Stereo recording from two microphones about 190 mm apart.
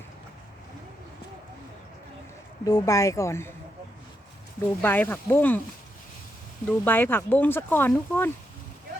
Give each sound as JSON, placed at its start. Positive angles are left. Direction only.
{"t": 2.6, "sound": "speech", "side_deg": 20}
{"t": 4.8, "sound": "speech", "side_deg": 10}
{"t": 6.7, "sound": "speech", "side_deg": 10}